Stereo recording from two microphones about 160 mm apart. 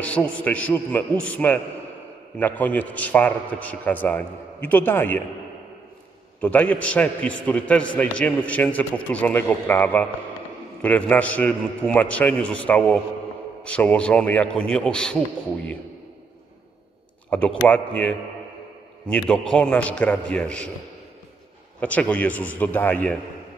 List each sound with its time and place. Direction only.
0.0 s a man's voice: 5° left (ahead or behind)
6.4 s a man's voice: 10° left (ahead or behind)
17.3 s a man's voice: 10° left (ahead or behind)
21.7 s a man's voice: 10° left (ahead or behind)